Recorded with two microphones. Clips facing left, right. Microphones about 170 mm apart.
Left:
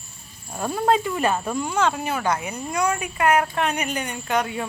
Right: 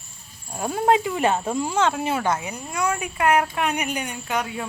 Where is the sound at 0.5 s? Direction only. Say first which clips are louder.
Right 1 dB; 15° right (ahead or behind).